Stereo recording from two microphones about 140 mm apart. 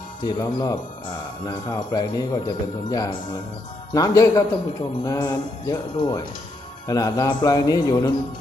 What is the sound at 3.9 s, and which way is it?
A man's voice, 25° left (ahead or behind).